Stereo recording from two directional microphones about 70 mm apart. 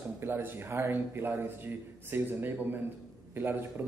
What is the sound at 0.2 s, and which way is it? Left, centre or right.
Speech, right.